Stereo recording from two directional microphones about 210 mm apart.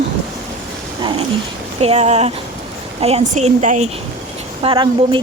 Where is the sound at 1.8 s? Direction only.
30° right (ahead or behind).